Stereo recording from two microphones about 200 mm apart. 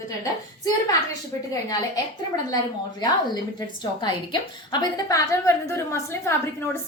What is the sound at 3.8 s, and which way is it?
A woman's voice, 20° left (ahead or behind).